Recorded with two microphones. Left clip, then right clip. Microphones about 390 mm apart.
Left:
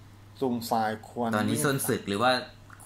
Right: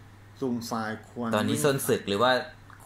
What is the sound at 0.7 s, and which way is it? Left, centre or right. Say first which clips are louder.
Speech: left 5 dB; left.